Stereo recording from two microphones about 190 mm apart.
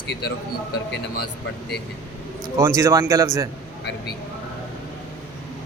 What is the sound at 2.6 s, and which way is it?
Speech, 15° right (ahead or behind).